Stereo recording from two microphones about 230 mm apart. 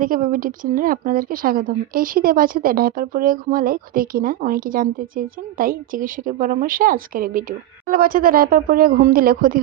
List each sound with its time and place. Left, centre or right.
0.0 s speech: right